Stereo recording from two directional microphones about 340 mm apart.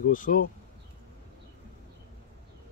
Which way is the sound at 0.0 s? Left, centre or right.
Left.